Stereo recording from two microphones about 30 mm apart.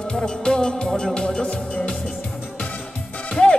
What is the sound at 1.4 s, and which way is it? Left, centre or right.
Music, left.